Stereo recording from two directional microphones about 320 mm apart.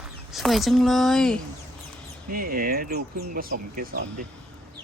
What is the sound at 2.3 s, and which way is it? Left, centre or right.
Speech, right.